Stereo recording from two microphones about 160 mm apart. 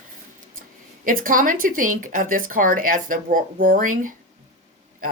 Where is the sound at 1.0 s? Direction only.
60° right (ahead or behind).